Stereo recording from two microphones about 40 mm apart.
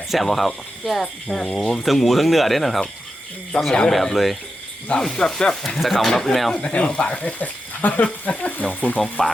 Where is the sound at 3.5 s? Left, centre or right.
Left.